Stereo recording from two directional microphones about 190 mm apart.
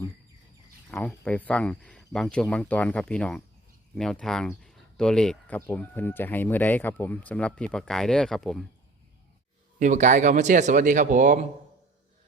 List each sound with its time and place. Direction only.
0.9 s speech: 5° left (ahead or behind)
9.7 s speech: 40° right (ahead or behind)